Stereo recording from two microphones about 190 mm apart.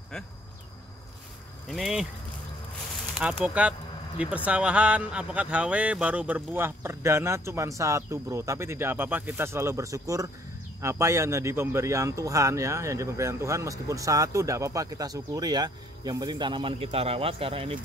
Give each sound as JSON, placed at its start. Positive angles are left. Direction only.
{"t": 1.7, "sound": "speech", "side_deg": 0}
{"t": 3.2, "sound": "speech", "side_deg": -5}